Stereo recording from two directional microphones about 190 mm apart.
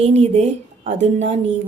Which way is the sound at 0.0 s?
35° right (ahead or behind).